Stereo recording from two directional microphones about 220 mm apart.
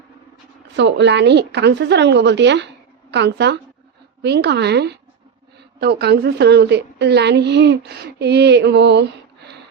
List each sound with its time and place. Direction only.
0.8 s a woman's voice: 55° right (ahead or behind)